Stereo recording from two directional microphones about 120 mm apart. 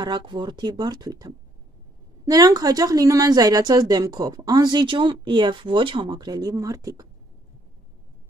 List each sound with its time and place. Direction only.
0.0 s a woman's voice: 40° right (ahead or behind)